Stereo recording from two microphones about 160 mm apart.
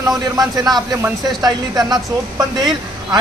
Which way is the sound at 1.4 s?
25° right (ahead or behind).